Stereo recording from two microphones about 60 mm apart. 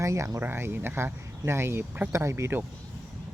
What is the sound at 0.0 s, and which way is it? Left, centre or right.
Speech, right.